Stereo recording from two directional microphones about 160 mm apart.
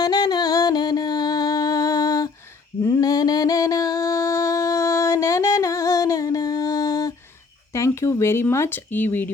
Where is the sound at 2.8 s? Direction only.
20° left (ahead or behind).